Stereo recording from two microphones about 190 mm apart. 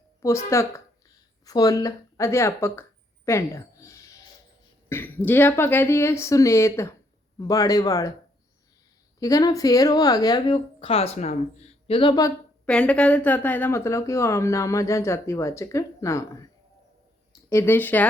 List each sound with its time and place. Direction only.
0.2 s speech: 15° left (ahead or behind)
3.2 s a sound: 15° left (ahead or behind)
4.9 s speech: 10° left (ahead or behind)
9.2 s speech: 20° left (ahead or behind)
12.6 s speech: 5° left (ahead or behind)
17.5 s speech: 10° left (ahead or behind)